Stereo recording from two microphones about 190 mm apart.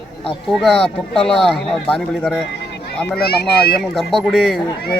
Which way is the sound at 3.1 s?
55° left (ahead or behind).